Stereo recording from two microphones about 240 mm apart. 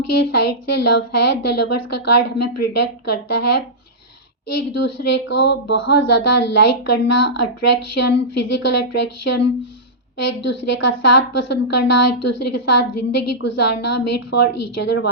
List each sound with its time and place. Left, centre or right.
0.0 s a woman's voice: left
5.4 s a sound: left
5.7 s a woman's voice: left